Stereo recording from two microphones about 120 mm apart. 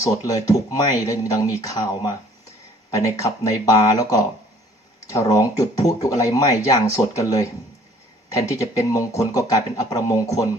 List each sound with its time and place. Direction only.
0.0 s speech: 30° left (ahead or behind)